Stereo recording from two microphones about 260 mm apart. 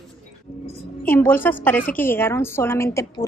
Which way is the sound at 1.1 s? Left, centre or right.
Centre.